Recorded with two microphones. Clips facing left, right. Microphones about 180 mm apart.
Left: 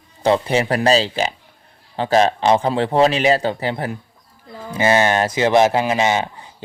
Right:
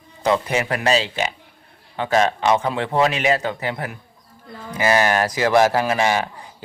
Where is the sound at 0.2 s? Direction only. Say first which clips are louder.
Left 3 dB; 30° left (ahead or behind).